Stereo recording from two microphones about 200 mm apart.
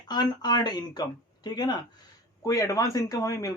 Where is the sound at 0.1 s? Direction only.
20° left (ahead or behind).